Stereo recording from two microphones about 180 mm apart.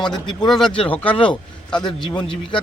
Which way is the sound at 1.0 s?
30° left (ahead or behind).